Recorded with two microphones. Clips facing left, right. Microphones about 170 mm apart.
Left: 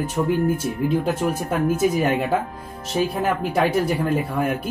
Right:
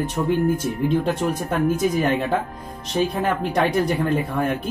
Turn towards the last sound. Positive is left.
turn(degrees=10)  # may be behind; listen again after turning